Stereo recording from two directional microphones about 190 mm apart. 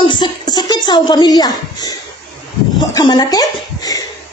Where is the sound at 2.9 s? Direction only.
20° left (ahead or behind).